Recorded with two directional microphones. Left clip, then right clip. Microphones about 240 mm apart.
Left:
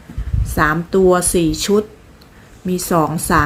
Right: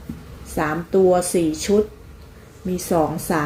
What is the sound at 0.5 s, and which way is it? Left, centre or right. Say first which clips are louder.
Speech: left 5 dB; left.